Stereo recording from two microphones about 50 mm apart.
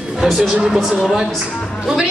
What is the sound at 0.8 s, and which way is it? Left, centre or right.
Speech, centre.